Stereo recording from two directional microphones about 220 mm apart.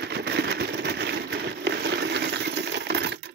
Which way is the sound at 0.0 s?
50° right (ahead or behind).